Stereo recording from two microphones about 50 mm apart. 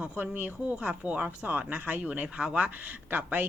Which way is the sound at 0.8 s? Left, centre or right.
Right.